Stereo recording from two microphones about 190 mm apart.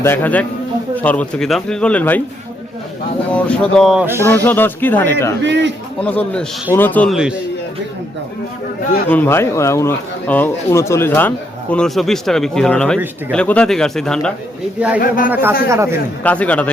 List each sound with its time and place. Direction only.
0.0 s speech: 10° left (ahead or behind)
3.3 s speech: 5° left (ahead or behind)
4.0 s speech: 10° right (ahead or behind)
4.3 s speech: 10° left (ahead or behind)
5.4 s a man's voice: 70° right (ahead or behind)
6.0 s speech: 5° left (ahead or behind)
9.0 s speech: 10° left (ahead or behind)
15.0 s a man's voice: 45° left (ahead or behind)
15.3 s speech: 10° right (ahead or behind)
16.2 s speech: 5° left (ahead or behind)